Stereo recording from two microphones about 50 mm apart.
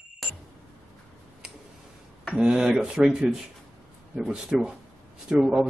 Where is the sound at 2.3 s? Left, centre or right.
Centre.